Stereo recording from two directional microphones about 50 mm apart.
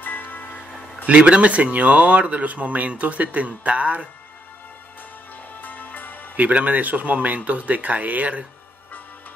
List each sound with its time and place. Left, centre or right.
0.0 s music: left
1.2 s speech: right
5.6 s music: left
6.3 s speech: right